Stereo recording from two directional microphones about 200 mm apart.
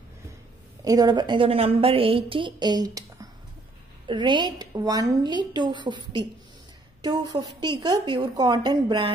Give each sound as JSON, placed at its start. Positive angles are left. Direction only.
{"t": 0.8, "sound": "a woman's voice", "side_deg": -20}